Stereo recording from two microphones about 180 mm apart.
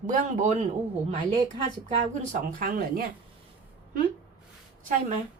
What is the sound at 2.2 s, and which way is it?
Speech, 45° right (ahead or behind).